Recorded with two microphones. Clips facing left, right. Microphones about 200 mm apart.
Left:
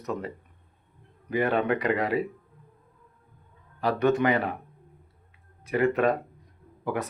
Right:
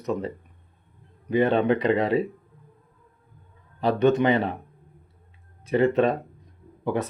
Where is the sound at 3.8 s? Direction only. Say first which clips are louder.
Right 3 dB; 25° right (ahead or behind).